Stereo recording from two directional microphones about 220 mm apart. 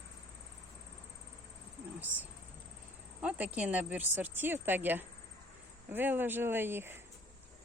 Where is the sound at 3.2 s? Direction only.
5° right (ahead or behind).